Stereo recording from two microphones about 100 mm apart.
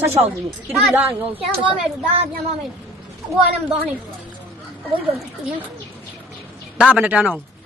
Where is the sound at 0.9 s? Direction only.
15° right (ahead or behind).